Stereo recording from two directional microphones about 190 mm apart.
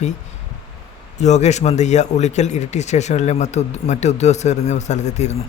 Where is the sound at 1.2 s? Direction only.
35° left (ahead or behind).